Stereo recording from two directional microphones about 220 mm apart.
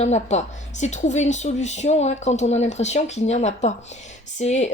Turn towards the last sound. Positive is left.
turn(degrees=30)  # may be behind; listen again after turning